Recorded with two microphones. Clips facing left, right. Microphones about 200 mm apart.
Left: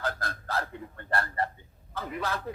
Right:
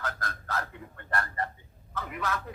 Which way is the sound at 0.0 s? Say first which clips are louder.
Left 3 dB; 30° left (ahead or behind).